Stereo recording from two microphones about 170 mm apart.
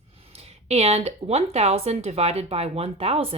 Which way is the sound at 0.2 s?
35° right (ahead or behind).